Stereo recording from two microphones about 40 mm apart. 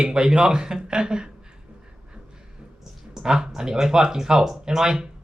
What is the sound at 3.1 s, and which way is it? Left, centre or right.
Speech, centre.